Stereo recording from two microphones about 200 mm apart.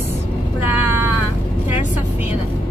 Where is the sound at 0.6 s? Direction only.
10° right (ahead or behind).